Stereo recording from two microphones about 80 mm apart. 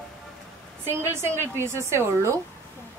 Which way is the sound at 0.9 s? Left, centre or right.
Right.